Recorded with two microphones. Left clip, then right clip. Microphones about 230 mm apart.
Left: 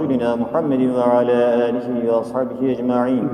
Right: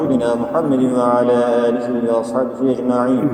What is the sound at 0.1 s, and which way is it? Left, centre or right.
A man's voice, left.